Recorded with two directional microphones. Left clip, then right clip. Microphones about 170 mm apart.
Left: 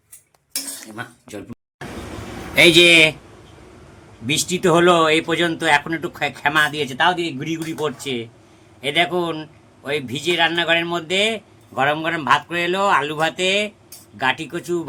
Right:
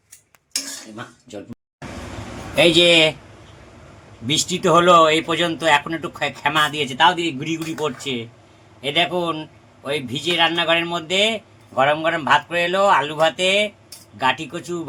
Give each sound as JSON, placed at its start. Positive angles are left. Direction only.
{"t": 2.6, "sound": "a man's voice", "side_deg": -5}
{"t": 4.3, "sound": "a man's voice", "side_deg": 0}